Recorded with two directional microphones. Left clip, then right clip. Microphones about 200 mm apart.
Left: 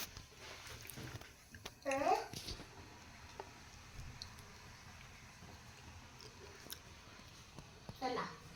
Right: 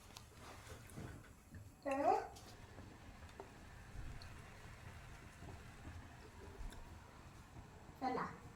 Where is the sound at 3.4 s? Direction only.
10° left (ahead or behind).